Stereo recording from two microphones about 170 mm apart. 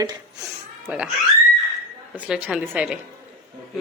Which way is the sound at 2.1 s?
5° right (ahead or behind).